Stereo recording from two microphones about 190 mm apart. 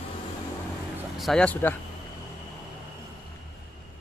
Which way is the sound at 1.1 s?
Centre (ahead or behind).